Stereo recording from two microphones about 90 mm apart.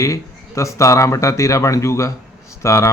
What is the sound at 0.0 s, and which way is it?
Speech, 35° left (ahead or behind).